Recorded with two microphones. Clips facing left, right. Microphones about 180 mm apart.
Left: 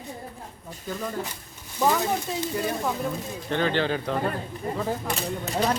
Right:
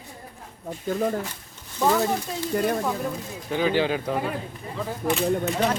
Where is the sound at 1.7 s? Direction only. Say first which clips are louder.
Right 1 dB; 5° left (ahead or behind).